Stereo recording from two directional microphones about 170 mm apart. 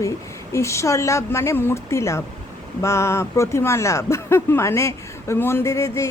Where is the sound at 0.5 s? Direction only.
15° left (ahead or behind).